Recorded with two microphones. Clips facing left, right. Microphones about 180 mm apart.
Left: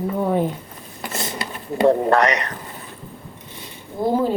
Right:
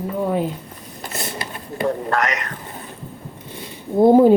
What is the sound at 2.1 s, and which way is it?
Speech, 35° left (ahead or behind).